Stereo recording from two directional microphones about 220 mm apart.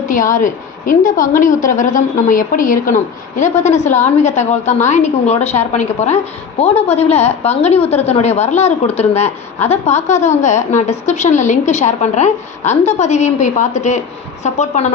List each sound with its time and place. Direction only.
0.1 s a woman's voice: 35° left (ahead or behind)